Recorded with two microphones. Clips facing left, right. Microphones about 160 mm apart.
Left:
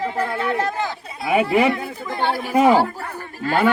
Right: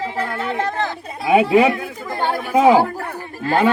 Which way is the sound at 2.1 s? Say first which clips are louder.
Right 1 dB; 45° right (ahead or behind).